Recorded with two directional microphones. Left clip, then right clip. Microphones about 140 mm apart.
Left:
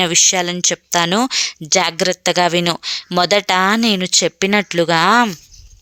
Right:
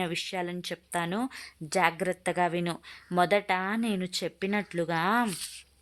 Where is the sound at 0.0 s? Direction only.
30° left (ahead or behind).